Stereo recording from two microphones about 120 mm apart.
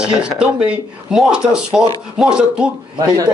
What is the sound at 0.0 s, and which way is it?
Speech, 10° right (ahead or behind).